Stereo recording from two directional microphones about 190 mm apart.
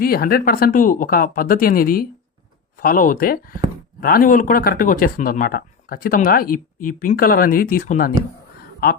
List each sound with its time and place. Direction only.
0.0 s speech: 50° left (ahead or behind)